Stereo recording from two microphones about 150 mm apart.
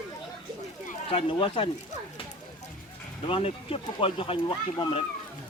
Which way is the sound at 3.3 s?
40° left (ahead or behind).